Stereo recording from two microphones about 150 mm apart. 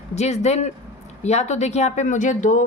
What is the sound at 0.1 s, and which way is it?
Speech, 50° left (ahead or behind).